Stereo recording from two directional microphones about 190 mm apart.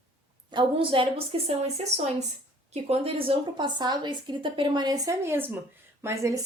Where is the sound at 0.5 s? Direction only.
25° right (ahead or behind).